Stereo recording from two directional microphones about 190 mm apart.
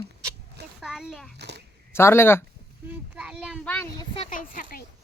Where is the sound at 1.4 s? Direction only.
65° right (ahead or behind).